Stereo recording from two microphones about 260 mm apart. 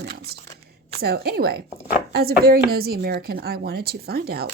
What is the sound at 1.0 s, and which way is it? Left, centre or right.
Speech, right.